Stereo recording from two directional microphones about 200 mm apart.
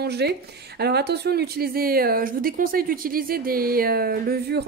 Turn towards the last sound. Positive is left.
turn(degrees=-55)  # may be behind; listen again after turning